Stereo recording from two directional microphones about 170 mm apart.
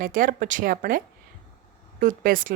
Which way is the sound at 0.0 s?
55° right (ahead or behind).